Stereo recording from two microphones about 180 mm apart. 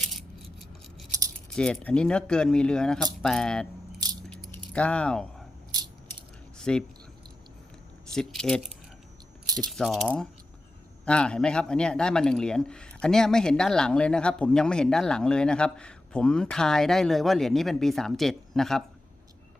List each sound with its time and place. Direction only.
1.5 s speech: 5° left (ahead or behind)
4.3 s keys jangling: 5° left (ahead or behind)
5.7 s coin: 20° right (ahead or behind)
6.6 s speech: 5° left (ahead or behind)
8.1 s speech: centre (ahead or behind)
9.7 s speech: centre (ahead or behind)